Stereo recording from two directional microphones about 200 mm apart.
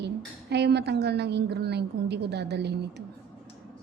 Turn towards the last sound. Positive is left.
turn(degrees=-55)  # may be behind; listen again after turning